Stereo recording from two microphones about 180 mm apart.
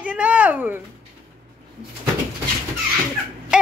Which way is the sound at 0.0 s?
10° right (ahead or behind).